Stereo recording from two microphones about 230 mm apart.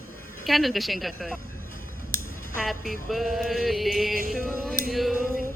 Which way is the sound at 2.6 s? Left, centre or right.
Centre.